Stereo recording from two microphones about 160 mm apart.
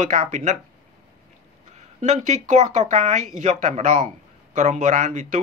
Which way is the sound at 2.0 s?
45° right (ahead or behind).